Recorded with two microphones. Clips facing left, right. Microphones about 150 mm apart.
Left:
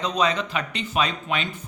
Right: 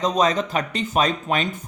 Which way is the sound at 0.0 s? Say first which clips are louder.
Right 4 dB; 40° right (ahead or behind).